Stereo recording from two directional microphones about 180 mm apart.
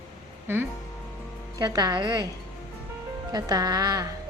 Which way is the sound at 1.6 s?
20° right (ahead or behind).